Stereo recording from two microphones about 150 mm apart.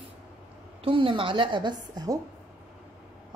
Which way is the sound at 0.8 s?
35° right (ahead or behind).